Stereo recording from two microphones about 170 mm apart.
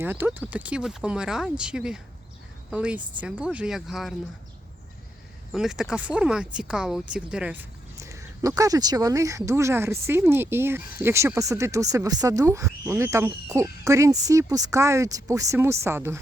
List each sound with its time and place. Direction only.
0.0 s speech: 10° right (ahead or behind)
5.5 s speech: 5° right (ahead or behind)